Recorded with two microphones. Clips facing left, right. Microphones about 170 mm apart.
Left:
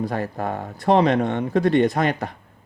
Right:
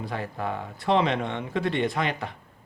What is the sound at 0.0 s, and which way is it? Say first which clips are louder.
Speech: left 6 dB; 45° left (ahead or behind).